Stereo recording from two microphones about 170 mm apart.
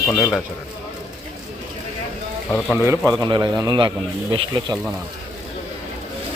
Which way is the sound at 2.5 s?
15° left (ahead or behind).